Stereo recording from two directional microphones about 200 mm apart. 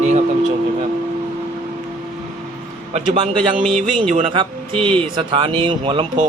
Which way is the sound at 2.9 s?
30° right (ahead or behind).